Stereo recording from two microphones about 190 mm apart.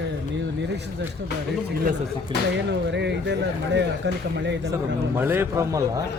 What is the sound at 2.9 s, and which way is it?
Speech, 65° right (ahead or behind).